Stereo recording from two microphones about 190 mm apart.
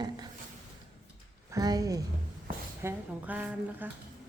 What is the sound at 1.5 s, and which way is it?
Speech, 20° right (ahead or behind).